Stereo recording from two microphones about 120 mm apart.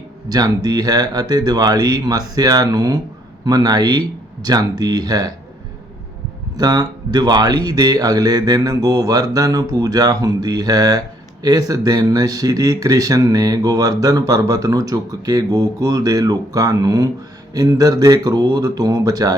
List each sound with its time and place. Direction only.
0.3 s speech: 35° right (ahead or behind)
6.6 s speech: 35° right (ahead or behind)